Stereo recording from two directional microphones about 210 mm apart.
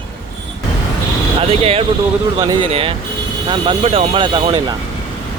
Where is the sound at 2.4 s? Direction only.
15° right (ahead or behind).